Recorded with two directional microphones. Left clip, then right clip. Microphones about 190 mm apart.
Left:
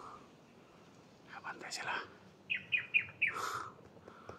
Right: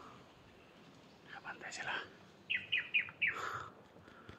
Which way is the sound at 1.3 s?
10° left (ahead or behind).